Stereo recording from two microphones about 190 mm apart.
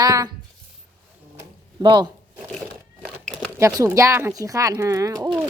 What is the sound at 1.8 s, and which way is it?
Speech, 20° right (ahead or behind).